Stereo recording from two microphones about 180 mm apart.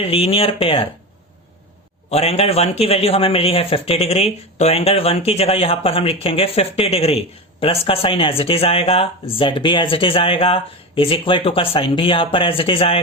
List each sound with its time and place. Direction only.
0.0 s speech: 30° left (ahead or behind)
2.0 s speech: 35° left (ahead or behind)